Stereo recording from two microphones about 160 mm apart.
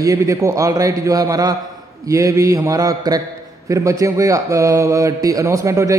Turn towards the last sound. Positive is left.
turn(degrees=-20)  # may be behind; listen again after turning